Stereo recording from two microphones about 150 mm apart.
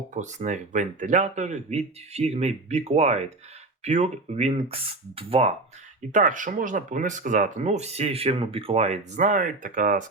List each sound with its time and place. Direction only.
0.1 s speech: 55° right (ahead or behind)
6.1 s speech: 55° right (ahead or behind)